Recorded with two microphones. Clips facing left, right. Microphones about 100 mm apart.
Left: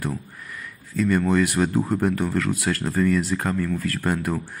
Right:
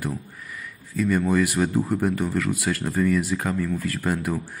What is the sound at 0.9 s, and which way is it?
Speech, 5° right (ahead or behind).